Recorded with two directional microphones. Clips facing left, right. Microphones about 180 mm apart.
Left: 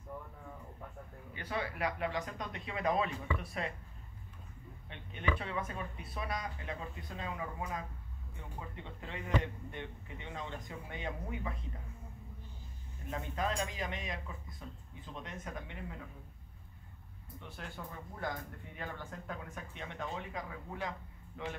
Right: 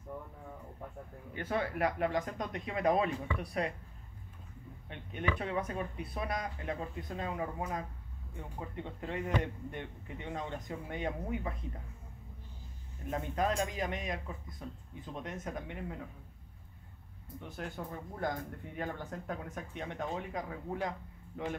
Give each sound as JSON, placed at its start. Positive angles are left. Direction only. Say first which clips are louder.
{"t": 1.3, "sound": "speech", "louder": "right 5 dB", "side_deg": -50}
{"t": 4.8, "sound": "speech", "louder": "right 1 dB", "side_deg": -50}
{"t": 13.1, "sound": "speech", "louder": "right 4 dB", "side_deg": -45}
{"t": 17.4, "sound": "speech", "louder": "right 5 dB", "side_deg": -50}